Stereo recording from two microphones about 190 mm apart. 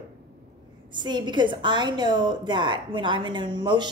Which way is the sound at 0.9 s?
25° right (ahead or behind).